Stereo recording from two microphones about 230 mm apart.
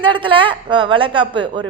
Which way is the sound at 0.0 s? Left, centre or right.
Right.